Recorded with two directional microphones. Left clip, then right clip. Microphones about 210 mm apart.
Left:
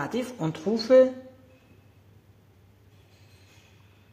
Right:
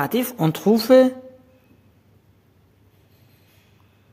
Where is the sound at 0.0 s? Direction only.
50° right (ahead or behind).